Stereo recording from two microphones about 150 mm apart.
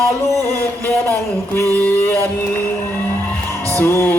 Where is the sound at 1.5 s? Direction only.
15° left (ahead or behind).